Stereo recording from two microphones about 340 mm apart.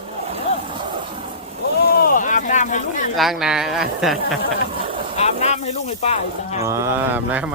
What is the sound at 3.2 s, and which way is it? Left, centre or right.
Speech, centre.